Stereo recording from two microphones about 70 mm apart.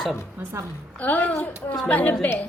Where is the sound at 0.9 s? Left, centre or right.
Left.